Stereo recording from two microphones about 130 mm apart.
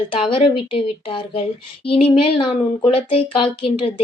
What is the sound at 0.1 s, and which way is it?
A woman's voice, 45° left (ahead or behind).